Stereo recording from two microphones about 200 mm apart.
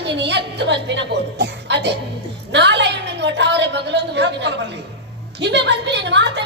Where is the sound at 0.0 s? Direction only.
60° right (ahead or behind).